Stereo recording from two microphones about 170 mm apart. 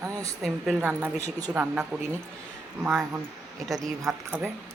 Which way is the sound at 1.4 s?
20° right (ahead or behind).